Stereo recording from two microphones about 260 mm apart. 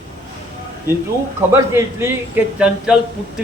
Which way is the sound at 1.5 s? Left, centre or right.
Centre.